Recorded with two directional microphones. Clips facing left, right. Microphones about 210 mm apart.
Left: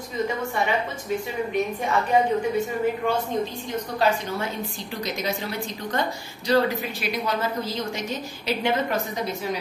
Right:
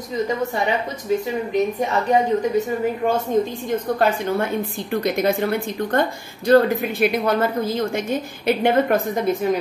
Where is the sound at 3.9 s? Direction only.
55° right (ahead or behind).